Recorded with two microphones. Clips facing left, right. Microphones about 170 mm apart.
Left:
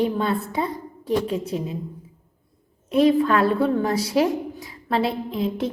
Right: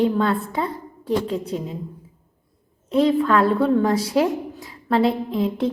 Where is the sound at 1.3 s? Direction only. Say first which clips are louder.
Even; 15° left (ahead or behind).